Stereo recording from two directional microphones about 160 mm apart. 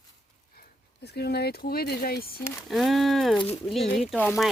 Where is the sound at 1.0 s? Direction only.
90° left; by 2.3 s 70° left (ahead or behind).